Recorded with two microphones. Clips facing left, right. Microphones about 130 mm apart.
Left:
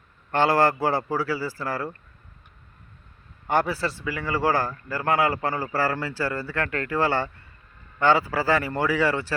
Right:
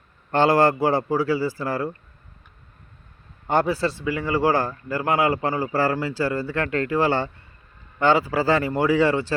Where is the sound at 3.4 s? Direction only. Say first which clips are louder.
Right 3 dB; 20° right (ahead or behind).